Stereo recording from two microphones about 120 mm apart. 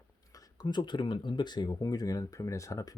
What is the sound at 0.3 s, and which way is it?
Speech, 35° left (ahead or behind).